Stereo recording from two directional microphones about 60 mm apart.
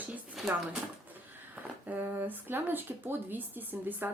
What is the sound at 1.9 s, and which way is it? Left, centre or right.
Speech, right.